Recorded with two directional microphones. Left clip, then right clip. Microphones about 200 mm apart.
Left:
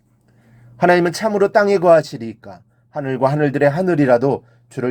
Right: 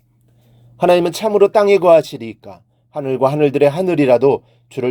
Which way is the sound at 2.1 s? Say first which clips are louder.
Right 1 dB; 45° right (ahead or behind).